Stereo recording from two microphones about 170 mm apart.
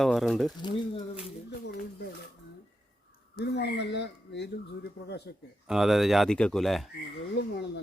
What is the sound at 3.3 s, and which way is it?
Speech, 75° left (ahead or behind).